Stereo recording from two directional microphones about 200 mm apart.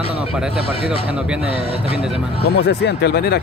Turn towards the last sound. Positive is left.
turn(degrees=55)  # may be behind; listen again after turning